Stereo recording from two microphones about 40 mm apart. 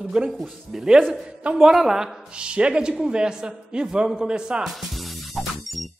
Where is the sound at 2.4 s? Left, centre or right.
Right.